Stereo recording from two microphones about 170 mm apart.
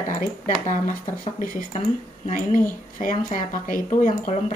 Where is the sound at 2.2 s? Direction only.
50° left (ahead or behind).